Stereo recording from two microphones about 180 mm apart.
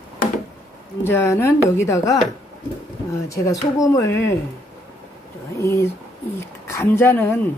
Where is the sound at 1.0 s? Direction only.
15° left (ahead or behind).